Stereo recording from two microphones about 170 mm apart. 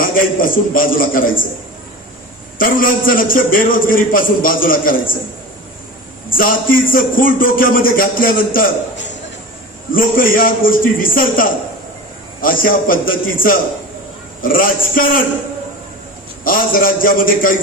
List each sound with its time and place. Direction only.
0.0 s a man's voice: 55° left (ahead or behind)
2.6 s a man's voice: 55° left (ahead or behind)
6.3 s a man's voice: 55° left (ahead or behind)
9.9 s a man's voice: 55° left (ahead or behind)
16.4 s a man's voice: 55° left (ahead or behind)